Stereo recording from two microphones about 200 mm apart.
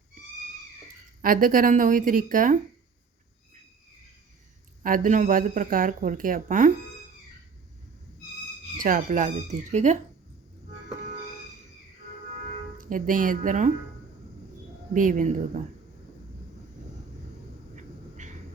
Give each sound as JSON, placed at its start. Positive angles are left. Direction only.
{"t": 1.2, "sound": "speech", "side_deg": -45}
{"t": 4.8, "sound": "speech", "side_deg": -40}
{"t": 8.8, "sound": "speech", "side_deg": -40}
{"t": 12.9, "sound": "speech", "side_deg": -40}
{"t": 14.9, "sound": "speech", "side_deg": -40}